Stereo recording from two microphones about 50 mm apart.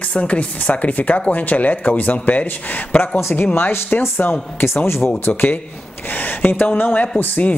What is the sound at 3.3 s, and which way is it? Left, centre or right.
Speech, left.